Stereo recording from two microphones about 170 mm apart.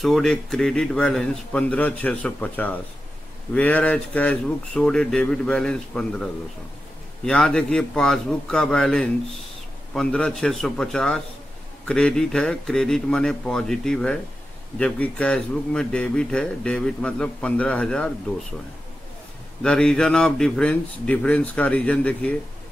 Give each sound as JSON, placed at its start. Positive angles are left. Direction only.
{"t": 0.0, "sound": "speech", "side_deg": 0}
{"t": 7.2, "sound": "speech", "side_deg": 5}
{"t": 19.6, "sound": "speech", "side_deg": 5}